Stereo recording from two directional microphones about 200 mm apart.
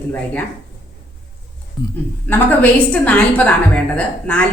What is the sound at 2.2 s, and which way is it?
A woman's voice, 10° left (ahead or behind).